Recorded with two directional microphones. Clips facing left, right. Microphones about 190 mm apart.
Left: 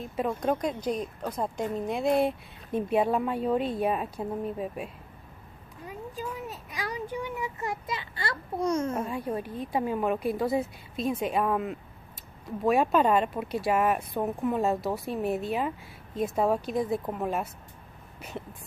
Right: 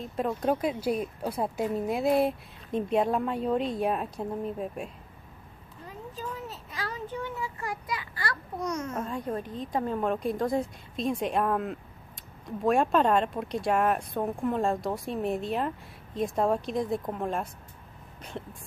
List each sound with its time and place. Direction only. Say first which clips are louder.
0.0 s speech: even; centre (ahead or behind)
5.9 s a sound: left 2 dB; 10° left (ahead or behind); by 8.9 s 30° left (ahead or behind)
8.9 s a woman's voice: left 1 dB; 10° left (ahead or behind)